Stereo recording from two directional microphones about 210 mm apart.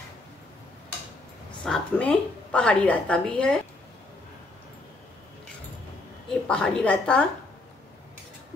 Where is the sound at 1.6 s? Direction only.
5° left (ahead or behind).